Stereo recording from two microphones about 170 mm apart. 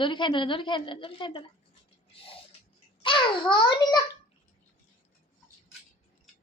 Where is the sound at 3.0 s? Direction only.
30° left (ahead or behind).